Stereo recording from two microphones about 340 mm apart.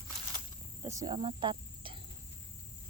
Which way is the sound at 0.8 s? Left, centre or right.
Centre.